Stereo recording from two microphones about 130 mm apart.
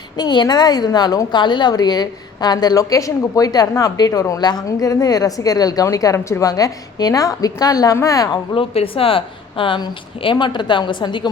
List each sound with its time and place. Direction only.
0.2 s a woman's voice: 35° left (ahead or behind)
8.5 s a woman's voice: 45° left (ahead or behind)